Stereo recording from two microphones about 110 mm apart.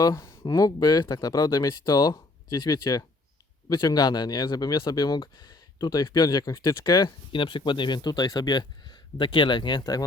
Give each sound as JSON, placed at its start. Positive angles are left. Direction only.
{"t": 0.0, "sound": "speech", "side_deg": 30}